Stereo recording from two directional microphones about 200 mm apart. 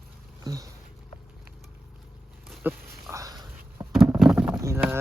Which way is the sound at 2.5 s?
10° right (ahead or behind).